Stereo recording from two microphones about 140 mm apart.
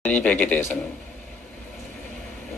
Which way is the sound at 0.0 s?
10° left (ahead or behind).